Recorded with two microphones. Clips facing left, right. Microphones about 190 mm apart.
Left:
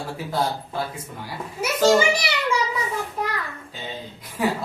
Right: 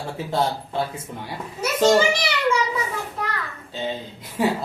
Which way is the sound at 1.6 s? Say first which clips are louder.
Even; 10° left (ahead or behind).